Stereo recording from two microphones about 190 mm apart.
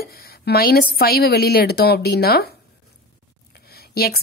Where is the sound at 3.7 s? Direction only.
55° left (ahead or behind).